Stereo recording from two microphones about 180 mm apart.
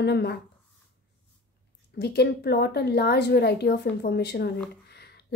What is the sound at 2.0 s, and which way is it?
A woman's voice, 65° left (ahead or behind).